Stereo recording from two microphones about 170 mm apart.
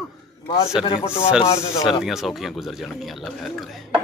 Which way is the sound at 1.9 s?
Centre (ahead or behind).